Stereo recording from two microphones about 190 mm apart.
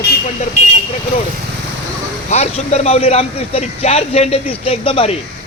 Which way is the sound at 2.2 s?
35° left (ahead or behind).